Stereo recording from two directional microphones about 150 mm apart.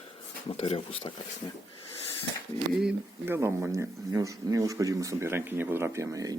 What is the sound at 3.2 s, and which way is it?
Speech, 15° right (ahead or behind).